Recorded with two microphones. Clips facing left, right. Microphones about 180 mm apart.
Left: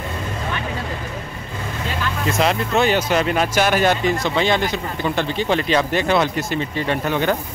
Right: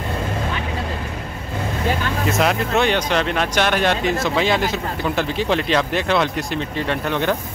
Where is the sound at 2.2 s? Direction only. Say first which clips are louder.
Even; centre (ahead or behind).